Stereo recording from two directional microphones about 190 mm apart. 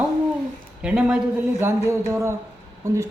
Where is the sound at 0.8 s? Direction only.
5° right (ahead or behind).